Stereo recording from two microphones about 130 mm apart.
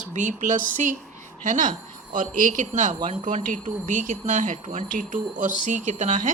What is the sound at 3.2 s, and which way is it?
Speech, 80° right.